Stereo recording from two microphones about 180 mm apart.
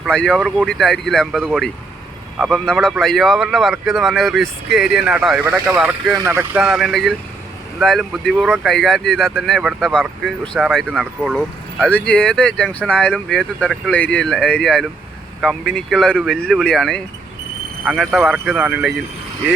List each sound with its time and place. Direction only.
0.0 s speech: 5° left (ahead or behind); by 6.6 s 15° right (ahead or behind)
6.6 s speech: centre (ahead or behind)
8.7 s speech: centre (ahead or behind)